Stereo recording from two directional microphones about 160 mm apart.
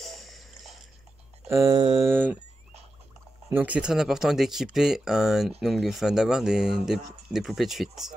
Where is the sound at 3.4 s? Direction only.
10° right (ahead or behind).